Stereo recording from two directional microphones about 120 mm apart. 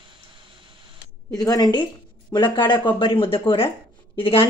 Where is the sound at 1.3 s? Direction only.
30° left (ahead or behind).